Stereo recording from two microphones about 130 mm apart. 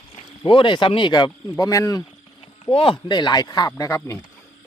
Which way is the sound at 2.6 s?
45° left (ahead or behind).